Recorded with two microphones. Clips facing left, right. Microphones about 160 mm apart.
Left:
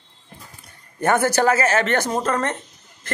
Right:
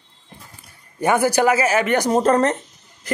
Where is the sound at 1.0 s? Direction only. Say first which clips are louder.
Right 1 dB; 10° right (ahead or behind).